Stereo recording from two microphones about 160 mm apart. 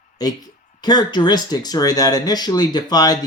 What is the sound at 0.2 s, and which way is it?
Speech, 25° left (ahead or behind).